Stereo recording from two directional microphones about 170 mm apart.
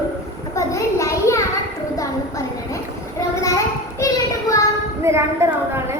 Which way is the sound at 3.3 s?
20° left (ahead or behind).